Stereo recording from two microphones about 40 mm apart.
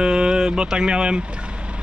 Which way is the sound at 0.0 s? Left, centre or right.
Centre.